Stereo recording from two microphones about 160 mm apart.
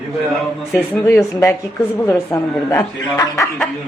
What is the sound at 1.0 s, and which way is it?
A man's voice, 15° left (ahead or behind).